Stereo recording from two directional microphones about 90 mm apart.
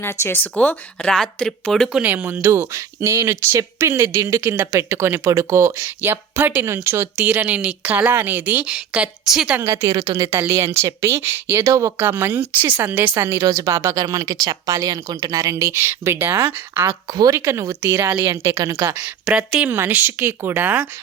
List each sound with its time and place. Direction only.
0.0 s speech: 25° left (ahead or behind)
1.1 s speech: 5° left (ahead or behind)
1.9 s speech: 15° right (ahead or behind); by 4.4 s 40° right (ahead or behind)
4.4 s speech: 25° right (ahead or behind); by 9.6 s 5° right (ahead or behind)
9.6 s speech: 30° right (ahead or behind)
9.8 s speech: 45° right (ahead or behind)
11.9 s speech: 25° right (ahead or behind)
18.5 s speech: 40° right (ahead or behind)
19.2 s speech: 10° right (ahead or behind)
19.7 s speech: 25° right (ahead or behind)